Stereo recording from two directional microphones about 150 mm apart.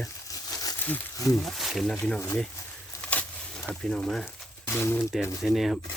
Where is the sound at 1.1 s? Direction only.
25° left (ahead or behind).